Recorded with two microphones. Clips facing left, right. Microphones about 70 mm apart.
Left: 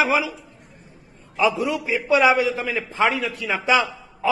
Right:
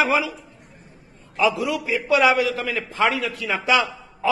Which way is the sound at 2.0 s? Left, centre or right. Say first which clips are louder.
Left 1 dB; left.